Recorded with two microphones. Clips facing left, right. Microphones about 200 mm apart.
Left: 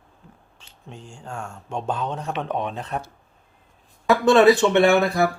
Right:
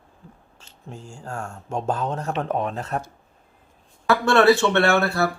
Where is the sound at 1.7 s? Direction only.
5° right (ahead or behind).